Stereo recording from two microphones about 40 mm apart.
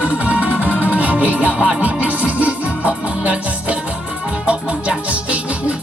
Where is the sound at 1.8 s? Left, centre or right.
Right.